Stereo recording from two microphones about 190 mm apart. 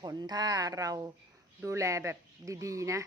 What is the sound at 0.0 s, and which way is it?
A woman's voice, 20° right (ahead or behind).